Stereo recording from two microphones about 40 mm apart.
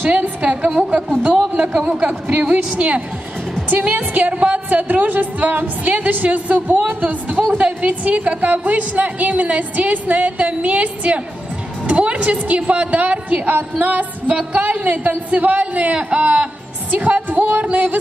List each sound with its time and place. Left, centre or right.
0.4 s a woman's voice: right
7.4 s a woman's voice: right
14.3 s a woman's voice: right
17.6 s a woman's voice: right